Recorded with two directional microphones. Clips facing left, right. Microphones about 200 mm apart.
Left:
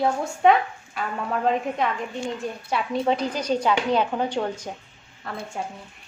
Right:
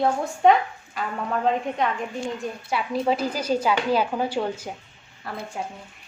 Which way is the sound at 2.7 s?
5° right (ahead or behind).